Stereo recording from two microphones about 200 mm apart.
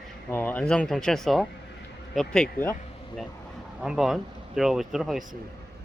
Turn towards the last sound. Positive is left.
turn(degrees=0)  # may be behind; listen again after turning